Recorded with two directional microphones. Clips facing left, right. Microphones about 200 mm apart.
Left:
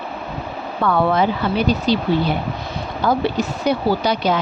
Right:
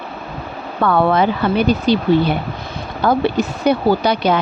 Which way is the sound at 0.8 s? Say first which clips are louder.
Right 2 dB; 60° right (ahead or behind).